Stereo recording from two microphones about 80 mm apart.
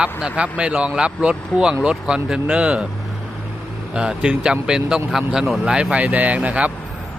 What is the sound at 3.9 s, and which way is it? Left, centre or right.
Speech, centre.